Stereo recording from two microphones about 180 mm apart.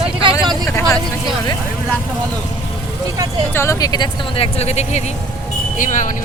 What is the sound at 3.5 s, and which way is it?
Speech, 15° left (ahead or behind).